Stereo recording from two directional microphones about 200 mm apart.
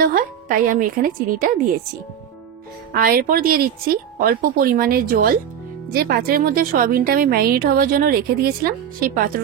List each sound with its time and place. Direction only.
0.0 s a woman's voice: 45° right (ahead or behind)
2.9 s a woman's voice: 45° right (ahead or behind)